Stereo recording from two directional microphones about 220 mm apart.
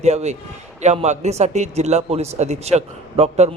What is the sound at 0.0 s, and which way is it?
A man's voice, 30° right (ahead or behind).